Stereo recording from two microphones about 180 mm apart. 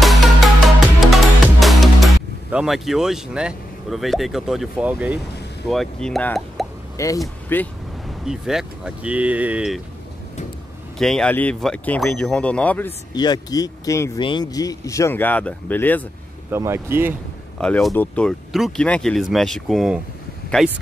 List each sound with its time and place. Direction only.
0.0 s music: centre (ahead or behind)
5.7 s speech: centre (ahead or behind)
7.0 s speech: 15° left (ahead or behind)
8.3 s speech: 5° right (ahead or behind)
11.0 s speech: 5° left (ahead or behind)
13.1 s speech: 20° left (ahead or behind)
16.4 s speech: 15° right (ahead or behind)
17.6 s speech: 5° left (ahead or behind)